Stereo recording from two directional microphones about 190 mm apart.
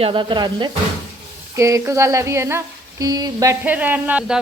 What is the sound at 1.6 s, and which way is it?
Sizzle, 15° right (ahead or behind).